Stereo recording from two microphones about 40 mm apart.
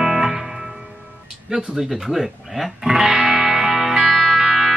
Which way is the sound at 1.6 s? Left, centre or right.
Right.